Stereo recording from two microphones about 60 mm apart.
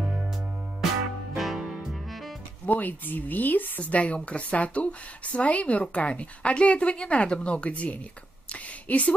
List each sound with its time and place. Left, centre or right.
1.3 s music: centre
2.6 s speech: left